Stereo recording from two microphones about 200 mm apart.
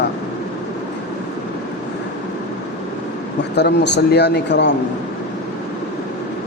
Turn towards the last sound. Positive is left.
turn(degrees=60)  # may be behind; listen again after turning